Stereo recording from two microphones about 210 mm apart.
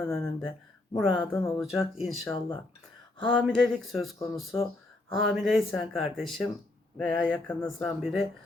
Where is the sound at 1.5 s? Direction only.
Centre (ahead or behind).